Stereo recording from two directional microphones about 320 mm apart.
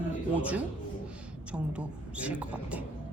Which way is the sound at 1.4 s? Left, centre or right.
Centre.